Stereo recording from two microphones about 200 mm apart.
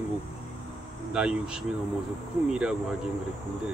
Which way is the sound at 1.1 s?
5° right (ahead or behind).